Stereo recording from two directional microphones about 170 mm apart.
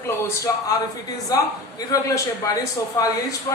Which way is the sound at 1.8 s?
20° left (ahead or behind).